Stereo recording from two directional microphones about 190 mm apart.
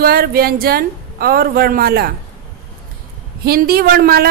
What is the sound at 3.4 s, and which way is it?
Speech, 55° right (ahead or behind).